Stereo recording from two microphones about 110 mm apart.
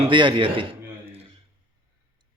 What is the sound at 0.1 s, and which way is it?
Speech, 50° right (ahead or behind).